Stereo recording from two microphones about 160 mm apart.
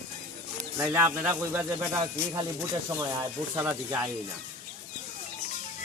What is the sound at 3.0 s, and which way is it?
Speech, 20° right (ahead or behind).